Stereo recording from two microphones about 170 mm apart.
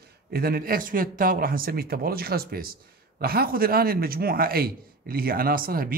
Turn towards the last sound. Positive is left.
turn(degrees=-55)  # may be behind; listen again after turning